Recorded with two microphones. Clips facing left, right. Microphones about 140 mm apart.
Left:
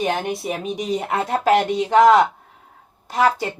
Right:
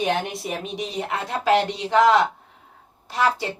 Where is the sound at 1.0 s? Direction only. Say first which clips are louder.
Left 3 dB; 50° left (ahead or behind).